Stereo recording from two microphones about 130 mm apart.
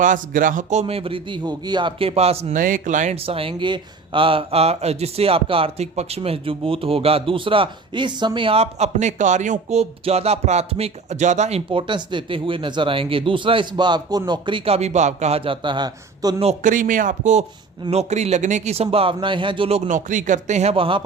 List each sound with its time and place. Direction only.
0.0 s speech: 85° right; by 2.5 s 55° right (ahead or behind)
2.5 s speech: 90° right; by 3.2 s 70° right (ahead or behind)
3.2 s speech: 45° right (ahead or behind)
16.6 s speech: 90° right; by 17.4 s 75° right (ahead or behind)
17.9 s speech: 60° right (ahead or behind)
20.1 s speech: 75° right (ahead or behind); by 21.0 s 45° right (ahead or behind)